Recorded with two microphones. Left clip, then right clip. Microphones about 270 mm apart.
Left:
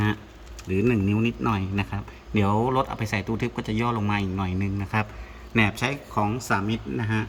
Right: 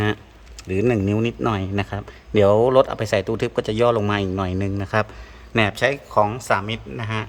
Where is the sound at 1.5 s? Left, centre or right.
Centre.